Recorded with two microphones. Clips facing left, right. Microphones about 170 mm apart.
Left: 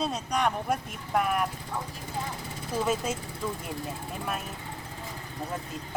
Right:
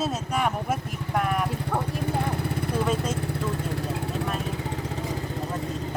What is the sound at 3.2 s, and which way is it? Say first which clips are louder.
Speech: right 6 dB; 70° right (ahead or behind).